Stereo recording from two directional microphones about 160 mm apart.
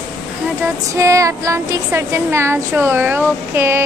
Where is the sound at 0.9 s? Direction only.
20° right (ahead or behind).